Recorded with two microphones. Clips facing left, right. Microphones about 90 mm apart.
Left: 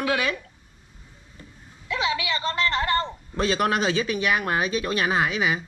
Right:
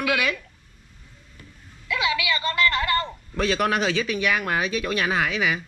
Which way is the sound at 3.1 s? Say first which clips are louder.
Even; 25° left (ahead or behind).